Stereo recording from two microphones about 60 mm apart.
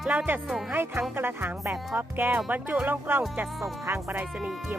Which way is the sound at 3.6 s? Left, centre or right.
Right.